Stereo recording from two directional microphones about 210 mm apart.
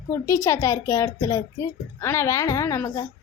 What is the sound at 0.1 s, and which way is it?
A child's voice, 15° left (ahead or behind).